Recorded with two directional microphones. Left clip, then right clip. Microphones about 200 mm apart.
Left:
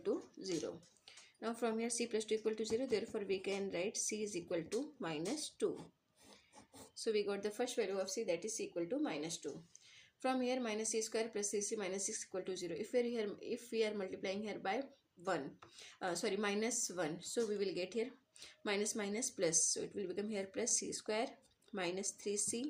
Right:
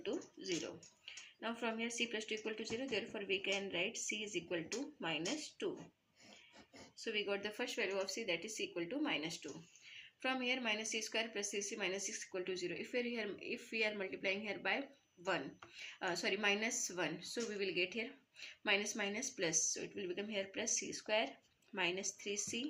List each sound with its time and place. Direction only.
1.4 s speech: 45° left (ahead or behind)
7.3 s speech: 45° left (ahead or behind)
15.8 s speech: 45° left (ahead or behind)